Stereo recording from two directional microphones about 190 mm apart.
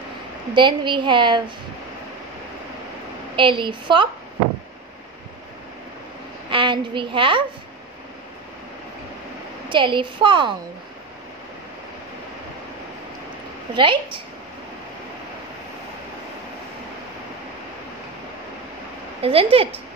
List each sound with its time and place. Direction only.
0.6 s a woman's voice: 25° right (ahead or behind)
3.3 s a woman's voice: 25° right (ahead or behind)
6.5 s a woman's voice: 25° right (ahead or behind)
9.7 s a woman's voice: 25° right (ahead or behind)
13.7 s a woman's voice: 25° right (ahead or behind)
19.2 s a woman's voice: 30° right (ahead or behind)